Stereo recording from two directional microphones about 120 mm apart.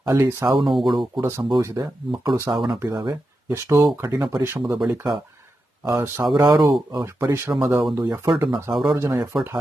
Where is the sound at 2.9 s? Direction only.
30° right (ahead or behind).